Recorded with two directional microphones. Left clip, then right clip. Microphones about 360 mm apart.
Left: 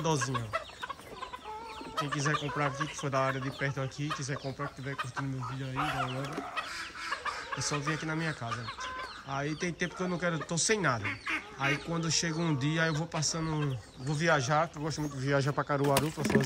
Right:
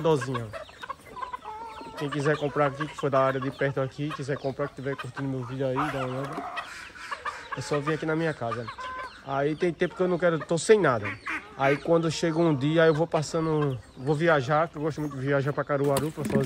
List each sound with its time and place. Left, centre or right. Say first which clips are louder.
0.0 s speech: right 6 dB; centre
2.0 s speech: right 5 dB; centre
15.9 s speech: right 2 dB; centre